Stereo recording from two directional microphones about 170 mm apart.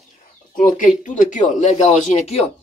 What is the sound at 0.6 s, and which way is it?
Speech, 50° left (ahead or behind).